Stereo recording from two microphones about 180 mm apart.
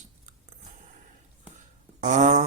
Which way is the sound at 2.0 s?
40° right (ahead or behind).